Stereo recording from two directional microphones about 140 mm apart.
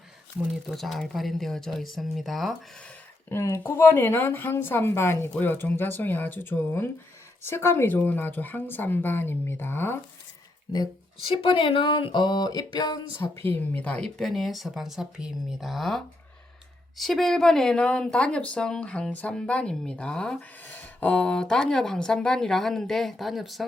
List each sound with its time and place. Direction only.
0.7 s a woman's voice: centre (ahead or behind)
3.2 s a woman's voice: 20° left (ahead or behind)
11.3 s speech: 40° left (ahead or behind)
13.2 s a woman's voice: 20° left (ahead or behind); by 23.6 s centre (ahead or behind)